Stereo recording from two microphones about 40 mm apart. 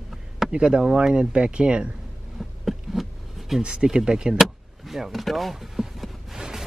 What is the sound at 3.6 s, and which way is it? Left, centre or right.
Speech, right.